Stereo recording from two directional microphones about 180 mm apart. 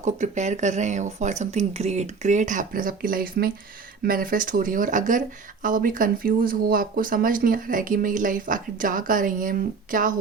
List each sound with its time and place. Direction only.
0.0 s speech: 40° right (ahead or behind)